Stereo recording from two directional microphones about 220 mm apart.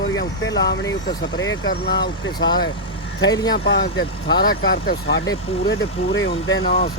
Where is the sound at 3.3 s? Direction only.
15° left (ahead or behind).